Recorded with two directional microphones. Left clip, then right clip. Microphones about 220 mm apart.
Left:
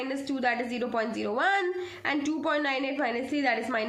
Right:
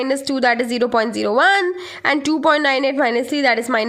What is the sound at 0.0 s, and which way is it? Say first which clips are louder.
A woman's voice: right 12 dB; 50° right (ahead or behind).